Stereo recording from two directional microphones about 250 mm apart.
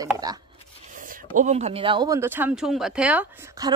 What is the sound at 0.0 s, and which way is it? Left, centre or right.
Speech, centre.